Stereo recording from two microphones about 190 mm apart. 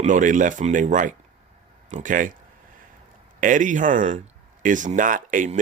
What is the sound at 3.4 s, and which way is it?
Speech, 40° right (ahead or behind).